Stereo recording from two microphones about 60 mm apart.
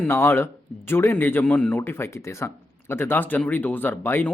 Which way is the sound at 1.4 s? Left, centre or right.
Centre.